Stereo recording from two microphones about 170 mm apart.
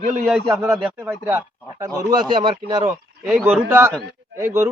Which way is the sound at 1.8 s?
20° right (ahead or behind).